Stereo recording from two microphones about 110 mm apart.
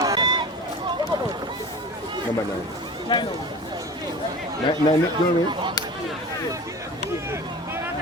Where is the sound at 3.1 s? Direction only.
45° left (ahead or behind).